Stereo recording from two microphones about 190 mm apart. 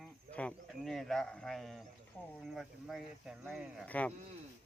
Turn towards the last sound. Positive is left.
turn(degrees=10)  # may be behind; listen again after turning